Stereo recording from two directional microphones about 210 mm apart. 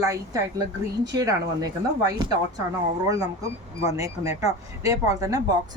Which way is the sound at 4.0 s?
15° right (ahead or behind).